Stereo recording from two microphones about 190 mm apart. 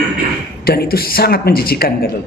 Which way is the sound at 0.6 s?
55° left (ahead or behind).